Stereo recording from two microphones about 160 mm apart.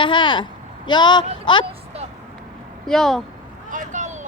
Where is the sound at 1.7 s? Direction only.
40° right (ahead or behind).